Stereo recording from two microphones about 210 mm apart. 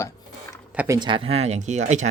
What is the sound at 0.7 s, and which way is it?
Speech, 15° right (ahead or behind).